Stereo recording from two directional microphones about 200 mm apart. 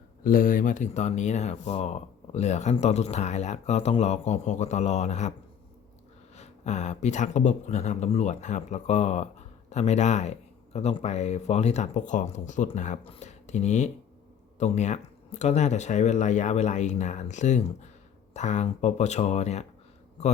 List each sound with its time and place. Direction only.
0.3 s speech: 45° left (ahead or behind)
6.3 s speech: 35° left (ahead or behind)